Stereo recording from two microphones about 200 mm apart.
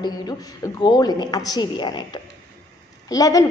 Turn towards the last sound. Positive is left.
turn(degrees=15)  # may be behind; listen again after turning